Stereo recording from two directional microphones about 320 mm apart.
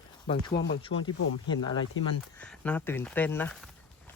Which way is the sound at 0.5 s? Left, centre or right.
Left.